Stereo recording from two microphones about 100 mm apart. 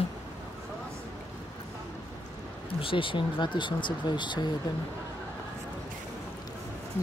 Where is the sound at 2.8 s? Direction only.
60° left (ahead or behind).